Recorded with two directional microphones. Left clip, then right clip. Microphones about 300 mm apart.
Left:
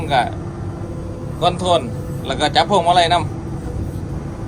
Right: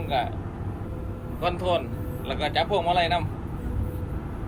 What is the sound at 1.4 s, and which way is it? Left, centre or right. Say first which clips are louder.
A man's voice: left 9 dB; left.